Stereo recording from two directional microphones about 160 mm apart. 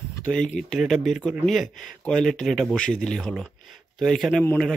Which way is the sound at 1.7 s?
50° left (ahead or behind).